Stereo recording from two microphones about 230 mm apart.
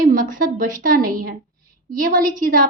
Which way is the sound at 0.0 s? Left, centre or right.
Right.